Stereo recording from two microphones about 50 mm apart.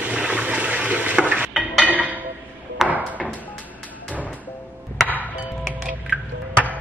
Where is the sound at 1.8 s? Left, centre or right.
Right.